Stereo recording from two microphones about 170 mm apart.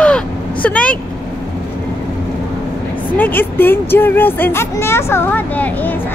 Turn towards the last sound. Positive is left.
turn(degrees=10)  # may be behind; listen again after turning